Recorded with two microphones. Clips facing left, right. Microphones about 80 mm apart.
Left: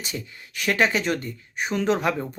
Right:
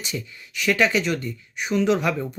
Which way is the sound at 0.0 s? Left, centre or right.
Left.